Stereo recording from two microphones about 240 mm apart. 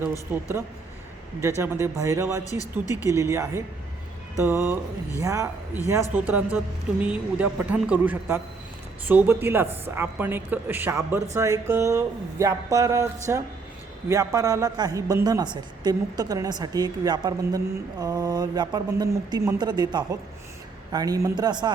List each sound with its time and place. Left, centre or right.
0.3 s a woman's voice: centre
1.6 s a woman's voice: centre
2.4 s speech: centre
3.1 s a woman's voice: centre